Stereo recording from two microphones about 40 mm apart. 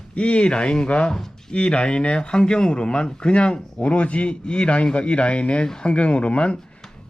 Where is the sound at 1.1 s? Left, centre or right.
Centre.